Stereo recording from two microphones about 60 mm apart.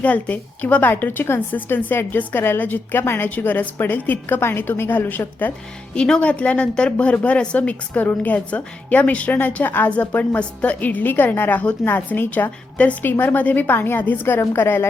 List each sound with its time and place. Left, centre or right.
0.0 s a woman's voice: left
3.2 s a woman's voice: left
5.9 s a woman's voice: centre; by 12.5 s left
12.7 s a woman's voice: left
13.0 s a woman's voice: left